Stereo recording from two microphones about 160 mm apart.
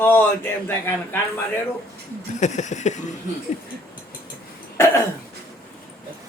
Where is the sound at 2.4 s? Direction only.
50° left (ahead or behind).